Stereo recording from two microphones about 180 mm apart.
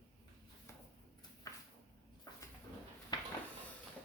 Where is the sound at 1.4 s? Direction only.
20° left (ahead or behind).